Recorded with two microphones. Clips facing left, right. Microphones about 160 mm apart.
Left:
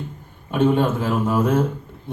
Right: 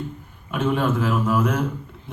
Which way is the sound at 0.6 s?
35° left (ahead or behind).